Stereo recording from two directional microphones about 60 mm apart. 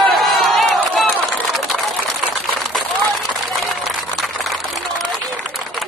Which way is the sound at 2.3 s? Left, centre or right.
Centre.